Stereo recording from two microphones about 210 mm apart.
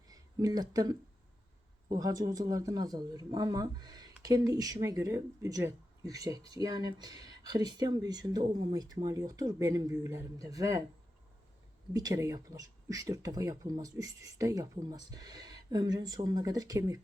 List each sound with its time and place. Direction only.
0.1 s speech: 15° right (ahead or behind)
11.9 s speech: 15° right (ahead or behind)